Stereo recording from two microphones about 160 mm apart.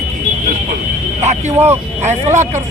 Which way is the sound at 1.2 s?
45° right (ahead or behind).